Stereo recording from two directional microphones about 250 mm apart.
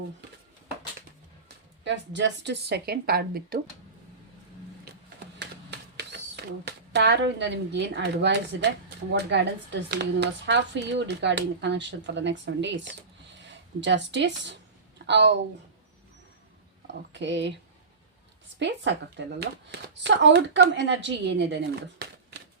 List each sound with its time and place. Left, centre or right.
1.8 s speech: right
6.0 s speech: right
16.8 s speech: right
18.6 s speech: right